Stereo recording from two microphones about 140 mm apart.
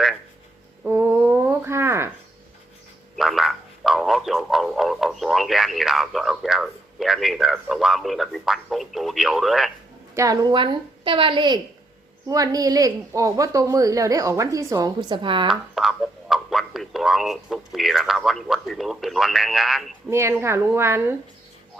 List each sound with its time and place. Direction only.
0.9 s a sound: 15° right (ahead or behind)
3.2 s speech: centre (ahead or behind)
10.2 s a woman's voice: 25° right (ahead or behind)
15.4 s speech: centre (ahead or behind)
20.1 s speech: 20° right (ahead or behind)